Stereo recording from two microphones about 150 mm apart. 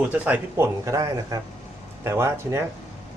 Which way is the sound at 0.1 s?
10° right (ahead or behind).